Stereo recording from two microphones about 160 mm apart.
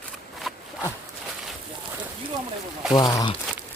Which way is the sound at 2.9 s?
25° left (ahead or behind).